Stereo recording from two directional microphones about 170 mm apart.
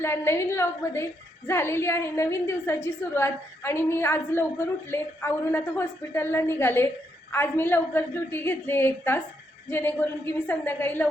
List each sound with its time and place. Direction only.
0.0 s a woman's voice: 15° left (ahead or behind)